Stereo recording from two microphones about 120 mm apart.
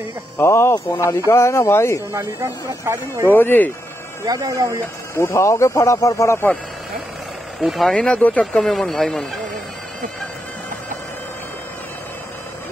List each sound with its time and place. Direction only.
0.4 s speech: 20° left (ahead or behind)
2.1 s speech: 25° right (ahead or behind)
3.3 s speech: 15° left (ahead or behind)
4.2 s speech: 25° right (ahead or behind)
5.1 s speech: 25° left (ahead or behind)
7.6 s speech: centre (ahead or behind)